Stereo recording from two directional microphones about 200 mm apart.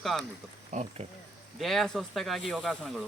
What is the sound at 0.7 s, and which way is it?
Speech, 35° right (ahead or behind).